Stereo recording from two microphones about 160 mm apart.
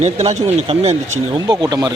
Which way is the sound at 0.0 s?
45° right (ahead or behind).